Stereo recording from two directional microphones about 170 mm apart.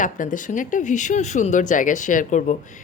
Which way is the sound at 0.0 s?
50° left (ahead or behind).